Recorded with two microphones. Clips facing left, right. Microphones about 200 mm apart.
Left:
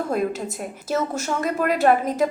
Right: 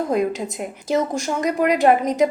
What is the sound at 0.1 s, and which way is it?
A woman's voice, 15° right (ahead or behind).